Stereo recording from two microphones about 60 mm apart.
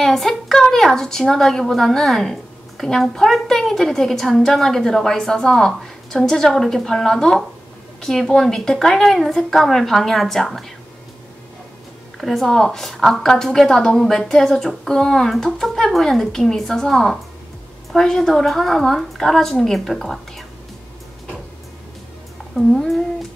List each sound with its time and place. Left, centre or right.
0.0 s a woman's voice: centre
12.2 s a woman's voice: centre
22.6 s a woman's voice: centre